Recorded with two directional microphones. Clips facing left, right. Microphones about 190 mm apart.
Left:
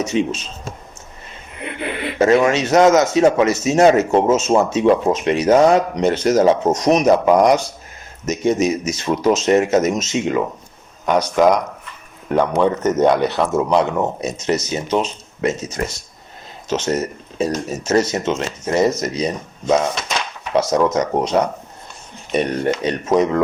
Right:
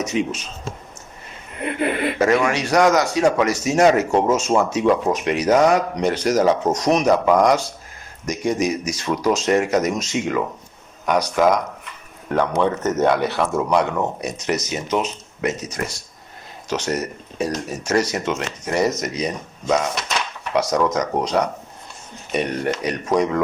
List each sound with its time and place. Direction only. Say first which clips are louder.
0.0 s a man's voice: left 3 dB; 30° left (ahead or behind)
2.1 s a man's voice: left 7 dB; 25° left (ahead or behind)
22.6 s a man's voice: left 3 dB; 25° left (ahead or behind)